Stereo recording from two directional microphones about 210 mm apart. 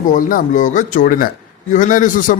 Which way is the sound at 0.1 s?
40° left (ahead or behind).